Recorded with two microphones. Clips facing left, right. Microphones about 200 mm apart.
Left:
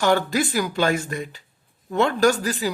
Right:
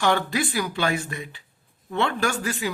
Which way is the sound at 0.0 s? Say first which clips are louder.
Left 3 dB; 45° left (ahead or behind).